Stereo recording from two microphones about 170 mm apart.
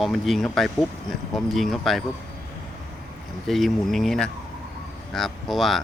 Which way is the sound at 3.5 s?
Centre (ahead or behind).